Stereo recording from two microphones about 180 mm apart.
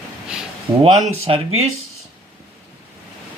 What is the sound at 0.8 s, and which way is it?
Speech, 35° right (ahead or behind).